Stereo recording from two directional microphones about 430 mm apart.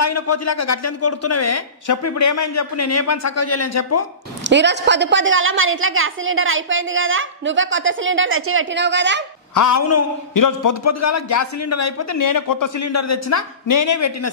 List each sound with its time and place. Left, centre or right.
0.0 s a man's voice: left
4.5 s a woman's voice: right
9.5 s a man's voice: left